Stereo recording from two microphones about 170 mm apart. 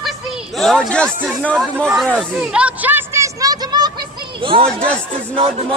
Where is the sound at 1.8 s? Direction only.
5° left (ahead or behind); by 3.9 s 25° right (ahead or behind).